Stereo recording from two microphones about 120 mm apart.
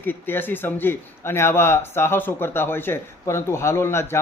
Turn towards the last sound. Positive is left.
turn(degrees=20)  # may be behind; listen again after turning